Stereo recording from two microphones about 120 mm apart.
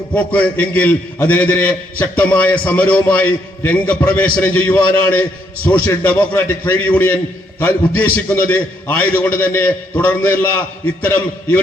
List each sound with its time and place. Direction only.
0.1 s a man's voice: 10° left (ahead or behind)